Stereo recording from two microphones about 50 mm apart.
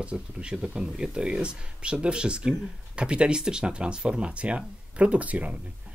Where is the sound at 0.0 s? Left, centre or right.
Right.